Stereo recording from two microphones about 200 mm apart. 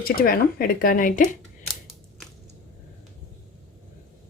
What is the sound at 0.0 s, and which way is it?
Speech, 45° left (ahead or behind).